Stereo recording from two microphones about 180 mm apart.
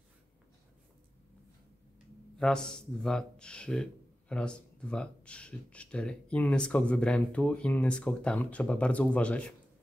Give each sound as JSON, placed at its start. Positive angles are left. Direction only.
{"t": 2.3, "sound": "a man's voice", "side_deg": 5}